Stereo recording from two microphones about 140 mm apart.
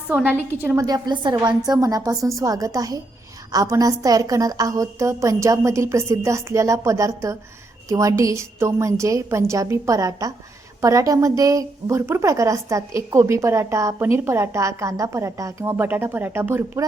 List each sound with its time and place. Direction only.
0.6 s a woman's voice: 15° right (ahead or behind)
0.9 s a woman's voice: 30° right (ahead or behind)